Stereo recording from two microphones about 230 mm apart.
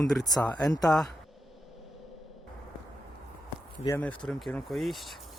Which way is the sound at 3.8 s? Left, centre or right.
Centre.